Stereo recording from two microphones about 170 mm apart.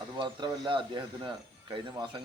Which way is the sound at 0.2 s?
30° right (ahead or behind).